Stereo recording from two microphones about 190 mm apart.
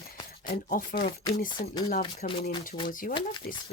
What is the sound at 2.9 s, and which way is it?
Speech, 45° left (ahead or behind).